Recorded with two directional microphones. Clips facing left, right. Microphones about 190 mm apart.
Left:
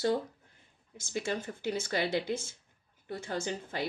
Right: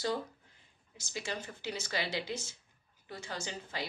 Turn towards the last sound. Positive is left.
turn(degrees=55)  # may be behind; listen again after turning